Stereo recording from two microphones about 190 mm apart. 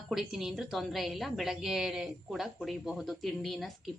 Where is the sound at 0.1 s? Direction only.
Centre (ahead or behind).